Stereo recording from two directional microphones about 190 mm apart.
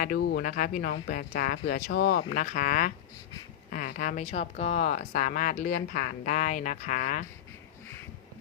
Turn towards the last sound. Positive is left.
turn(degrees=45)  # may be behind; listen again after turning